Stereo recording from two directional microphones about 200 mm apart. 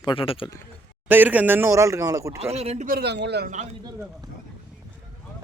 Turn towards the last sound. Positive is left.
turn(degrees=-55)  # may be behind; listen again after turning